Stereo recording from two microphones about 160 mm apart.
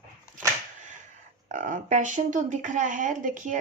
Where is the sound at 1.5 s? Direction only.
55° right (ahead or behind).